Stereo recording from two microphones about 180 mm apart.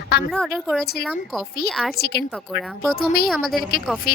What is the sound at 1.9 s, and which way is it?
Speech, 65° left (ahead or behind).